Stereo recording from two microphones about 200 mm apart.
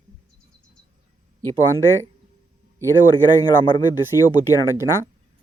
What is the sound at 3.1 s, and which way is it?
Speech, 20° left (ahead or behind).